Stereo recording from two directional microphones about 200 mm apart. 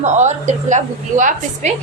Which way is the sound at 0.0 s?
35° right (ahead or behind).